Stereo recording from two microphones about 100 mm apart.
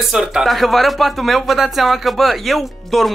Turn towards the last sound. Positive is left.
turn(degrees=0)  # may be behind; listen again after turning